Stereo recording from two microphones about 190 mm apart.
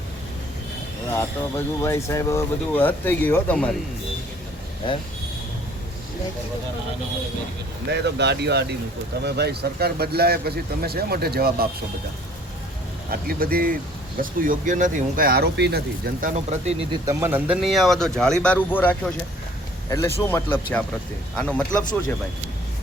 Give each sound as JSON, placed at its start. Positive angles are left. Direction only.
{"t": 1.1, "sound": "speech", "side_deg": 15}
{"t": 4.8, "sound": "speech", "side_deg": 25}
{"t": 7.9, "sound": "speech", "side_deg": -65}
{"t": 13.1, "sound": "speech", "side_deg": -50}
{"t": 16.3, "sound": "speech", "side_deg": -35}
{"t": 16.9, "sound": "speech", "side_deg": -15}
{"t": 20.2, "sound": "speech", "side_deg": 10}